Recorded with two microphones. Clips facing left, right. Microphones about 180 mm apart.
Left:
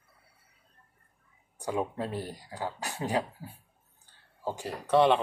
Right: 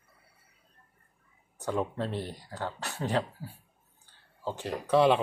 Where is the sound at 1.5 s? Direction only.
10° left (ahead or behind).